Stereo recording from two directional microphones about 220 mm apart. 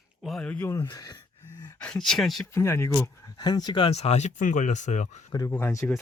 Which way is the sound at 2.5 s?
10° left (ahead or behind).